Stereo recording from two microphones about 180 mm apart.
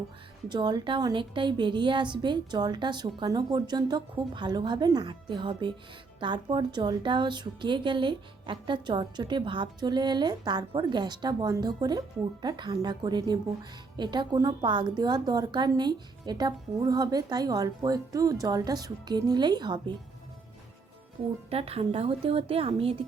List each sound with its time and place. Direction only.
0.4 s a woman's voice: 25° right (ahead or behind)
21.5 s a woman's voice: 35° right (ahead or behind)